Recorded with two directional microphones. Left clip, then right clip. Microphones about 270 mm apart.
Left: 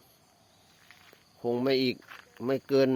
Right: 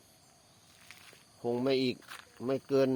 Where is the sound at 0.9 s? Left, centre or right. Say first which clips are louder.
Right 2 dB; centre.